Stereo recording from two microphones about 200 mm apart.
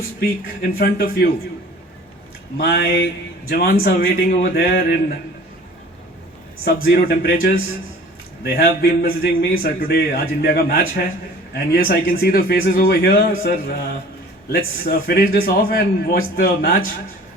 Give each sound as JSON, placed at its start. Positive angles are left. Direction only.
{"t": 0.8, "sound": "a man's voice", "side_deg": 45}
{"t": 2.6, "sound": "a man's voice", "side_deg": 50}
{"t": 6.7, "sound": "a man's voice", "side_deg": 50}